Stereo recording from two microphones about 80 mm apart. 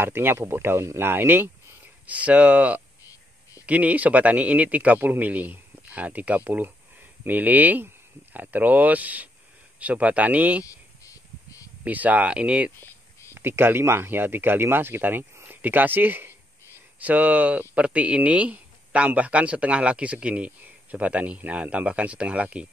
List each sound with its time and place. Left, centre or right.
0.0 s speech: right
10.6 s cricket: left
11.8 s speech: centre
13.3 s speech: right